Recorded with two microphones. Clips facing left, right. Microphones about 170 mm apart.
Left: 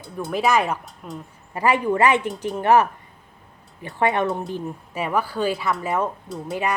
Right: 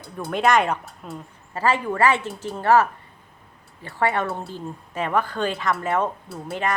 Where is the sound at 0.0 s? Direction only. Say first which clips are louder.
Even; centre (ahead or behind).